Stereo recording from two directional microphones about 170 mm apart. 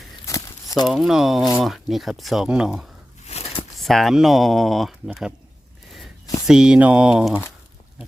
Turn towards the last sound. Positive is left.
turn(degrees=-5)  # may be behind; listen again after turning